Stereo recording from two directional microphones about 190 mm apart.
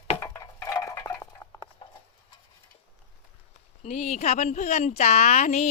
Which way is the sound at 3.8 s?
40° left (ahead or behind).